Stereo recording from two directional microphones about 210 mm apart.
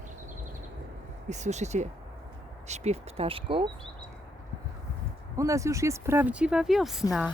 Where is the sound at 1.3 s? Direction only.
35° right (ahead or behind).